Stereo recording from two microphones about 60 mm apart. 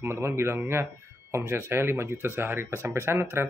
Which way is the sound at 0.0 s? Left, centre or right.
Right.